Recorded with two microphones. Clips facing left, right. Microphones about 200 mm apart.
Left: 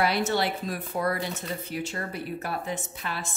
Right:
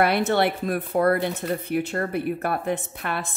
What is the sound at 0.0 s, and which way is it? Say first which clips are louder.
A woman's voice: right 5 dB; 55° right (ahead or behind).